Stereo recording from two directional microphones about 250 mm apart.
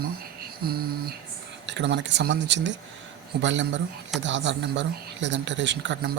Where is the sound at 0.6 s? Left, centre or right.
Right.